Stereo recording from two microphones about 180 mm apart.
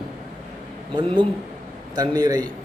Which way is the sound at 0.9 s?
25° right (ahead or behind).